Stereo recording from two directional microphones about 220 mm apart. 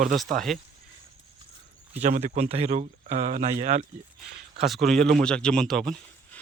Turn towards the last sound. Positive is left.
turn(degrees=0)  # may be behind; listen again after turning